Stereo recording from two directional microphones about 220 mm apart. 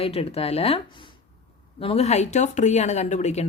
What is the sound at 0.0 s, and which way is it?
Speech, 25° left (ahead or behind).